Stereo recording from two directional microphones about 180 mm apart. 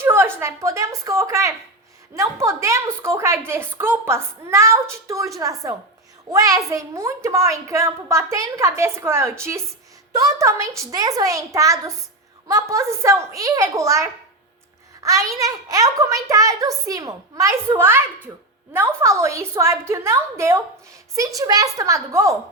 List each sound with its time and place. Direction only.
0.0 s a woman's voice: 15° right (ahead or behind)